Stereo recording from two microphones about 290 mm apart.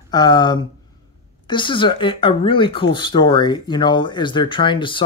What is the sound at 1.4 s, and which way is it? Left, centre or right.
Speech, centre.